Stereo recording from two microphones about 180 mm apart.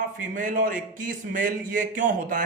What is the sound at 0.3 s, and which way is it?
Speech, 45° right (ahead or behind).